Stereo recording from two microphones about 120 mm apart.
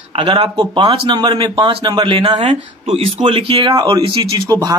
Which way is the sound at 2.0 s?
55° right (ahead or behind).